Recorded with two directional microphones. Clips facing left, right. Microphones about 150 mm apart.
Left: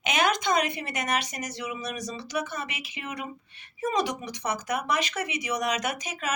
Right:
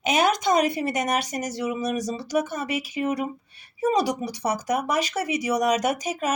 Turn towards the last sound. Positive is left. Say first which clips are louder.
# right 6 dB
turn(degrees=-40)  # may be behind; listen again after turning